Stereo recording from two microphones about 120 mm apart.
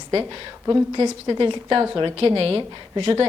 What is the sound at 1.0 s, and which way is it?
A woman's voice, 40° right (ahead or behind).